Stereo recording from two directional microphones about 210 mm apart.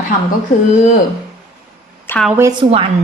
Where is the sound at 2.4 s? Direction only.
20° right (ahead or behind).